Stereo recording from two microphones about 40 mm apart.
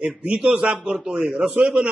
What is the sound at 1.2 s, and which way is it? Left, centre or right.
Speech, right.